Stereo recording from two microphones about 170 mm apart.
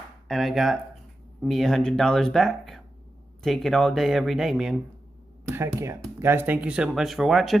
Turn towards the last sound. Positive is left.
turn(degrees=0)  # may be behind; listen again after turning